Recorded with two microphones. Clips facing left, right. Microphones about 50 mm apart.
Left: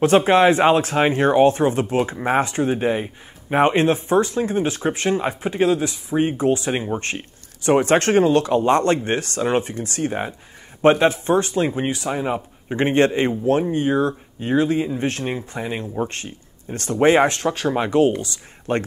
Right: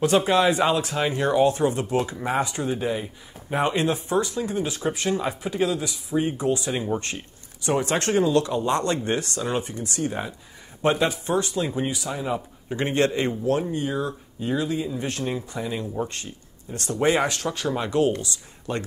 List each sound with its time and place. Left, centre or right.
0.0 s speech: left